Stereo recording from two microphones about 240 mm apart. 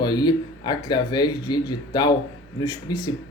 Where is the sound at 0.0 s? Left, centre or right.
Centre.